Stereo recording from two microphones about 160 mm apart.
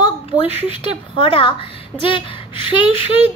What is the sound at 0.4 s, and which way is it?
A woman's voice, 35° left (ahead or behind).